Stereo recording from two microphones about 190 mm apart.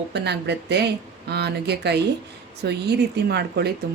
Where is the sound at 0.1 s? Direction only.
60° right (ahead or behind).